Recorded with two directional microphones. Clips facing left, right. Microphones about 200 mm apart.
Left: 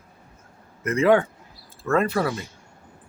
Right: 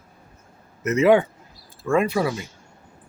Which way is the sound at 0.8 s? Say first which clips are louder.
Right 2 dB; 20° right (ahead or behind).